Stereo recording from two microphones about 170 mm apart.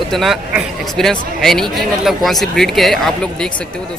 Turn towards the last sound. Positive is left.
turn(degrees=0)  # may be behind; listen again after turning